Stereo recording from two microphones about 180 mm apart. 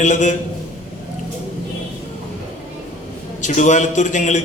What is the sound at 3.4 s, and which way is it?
A man's voice, 40° left (ahead or behind).